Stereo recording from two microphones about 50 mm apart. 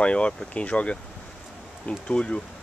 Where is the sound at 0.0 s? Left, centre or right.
Left.